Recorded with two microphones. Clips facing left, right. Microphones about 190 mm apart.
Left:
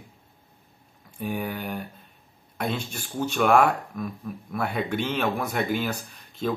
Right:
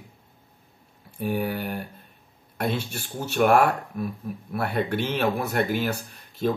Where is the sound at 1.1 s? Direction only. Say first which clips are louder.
Right 3 dB; 5° right (ahead or behind).